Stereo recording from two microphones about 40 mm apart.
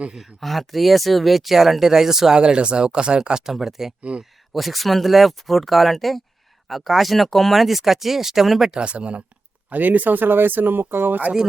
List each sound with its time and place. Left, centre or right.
0.2 s speech: centre
2.4 s speech: right
3.5 s speech: centre
8.7 s speech: right
9.6 s speech: right